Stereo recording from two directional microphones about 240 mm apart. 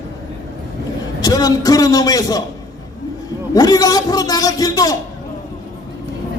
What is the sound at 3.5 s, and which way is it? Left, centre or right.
A man's voice, centre.